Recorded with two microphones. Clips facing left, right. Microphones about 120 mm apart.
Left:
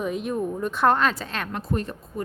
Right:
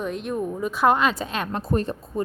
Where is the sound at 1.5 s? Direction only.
35° right (ahead or behind).